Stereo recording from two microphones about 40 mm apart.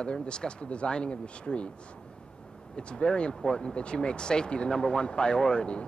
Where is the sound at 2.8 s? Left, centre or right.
Left.